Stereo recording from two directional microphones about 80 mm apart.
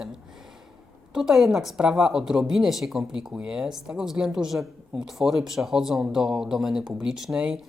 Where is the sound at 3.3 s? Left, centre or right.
Centre.